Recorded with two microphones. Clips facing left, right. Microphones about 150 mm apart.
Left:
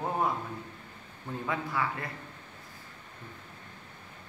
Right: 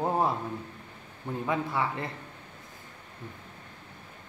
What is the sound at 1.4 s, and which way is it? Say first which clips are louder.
Speech: right 3 dB; 25° right (ahead or behind).